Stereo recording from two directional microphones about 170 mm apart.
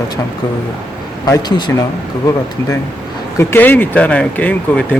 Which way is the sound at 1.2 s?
25° left (ahead or behind).